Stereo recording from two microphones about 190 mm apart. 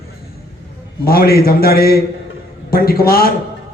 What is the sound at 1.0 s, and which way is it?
A man's voice, 50° left (ahead or behind).